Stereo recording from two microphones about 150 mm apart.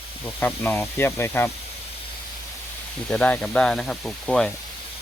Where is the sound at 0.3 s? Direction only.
15° left (ahead or behind).